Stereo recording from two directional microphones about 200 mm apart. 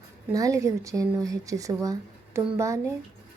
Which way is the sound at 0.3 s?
15° right (ahead or behind).